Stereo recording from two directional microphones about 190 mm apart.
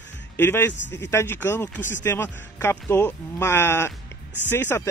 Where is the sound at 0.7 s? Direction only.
70° left (ahead or behind).